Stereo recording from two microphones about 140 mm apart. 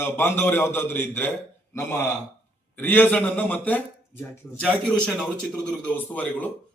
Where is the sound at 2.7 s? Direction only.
15° left (ahead or behind).